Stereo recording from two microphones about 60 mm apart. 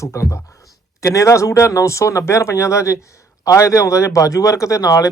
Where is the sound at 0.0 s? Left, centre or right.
Left.